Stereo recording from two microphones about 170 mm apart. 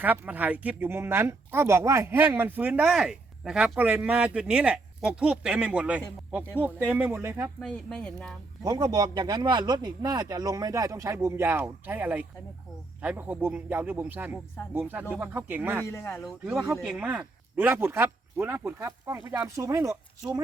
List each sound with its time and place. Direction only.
0.0 s speech: 10° right (ahead or behind)
7.6 s speech: 5° left (ahead or behind)
8.6 s speech: 20° right (ahead or behind)
15.9 s speech: 15° left (ahead or behind)
16.2 s speech: 5° right (ahead or behind)